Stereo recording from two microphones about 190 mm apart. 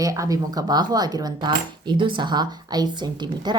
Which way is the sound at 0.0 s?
20° right (ahead or behind).